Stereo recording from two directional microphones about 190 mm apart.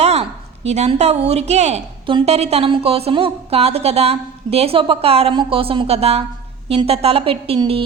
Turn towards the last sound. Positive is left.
turn(degrees=-30)  # may be behind; listen again after turning